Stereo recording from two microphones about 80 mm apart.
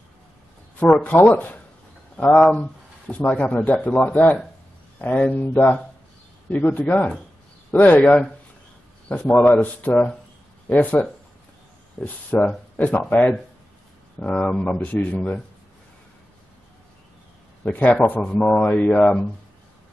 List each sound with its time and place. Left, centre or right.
0.7 s speech: centre
2.2 s speech: centre
9.4 s speech: left
14.2 s speech: centre
17.6 s speech: centre